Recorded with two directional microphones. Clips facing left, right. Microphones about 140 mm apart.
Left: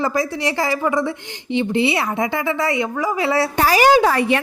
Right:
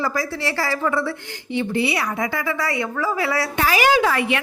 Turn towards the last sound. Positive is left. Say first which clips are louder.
# left 4 dB
turn(degrees=35)  # may be behind; listen again after turning